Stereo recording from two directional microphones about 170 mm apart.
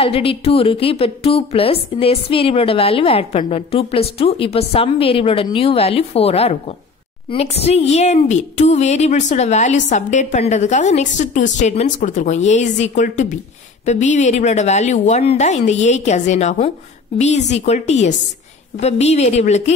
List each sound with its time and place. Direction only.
0.0 s a woman's voice: 35° left (ahead or behind)